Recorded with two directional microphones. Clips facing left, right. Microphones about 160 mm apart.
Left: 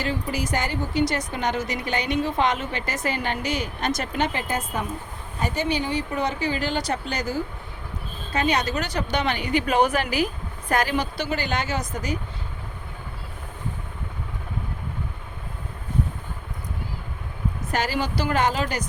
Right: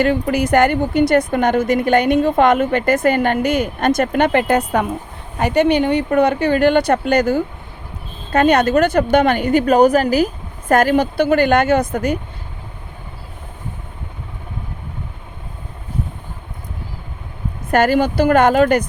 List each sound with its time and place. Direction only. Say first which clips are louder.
0.0 s a woman's voice: right 11 dB; 60° right (ahead or behind)
17.7 s a woman's voice: right 12 dB; 55° right (ahead or behind)